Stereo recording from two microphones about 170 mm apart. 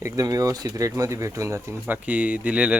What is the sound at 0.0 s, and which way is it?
A man's voice, 20° right (ahead or behind).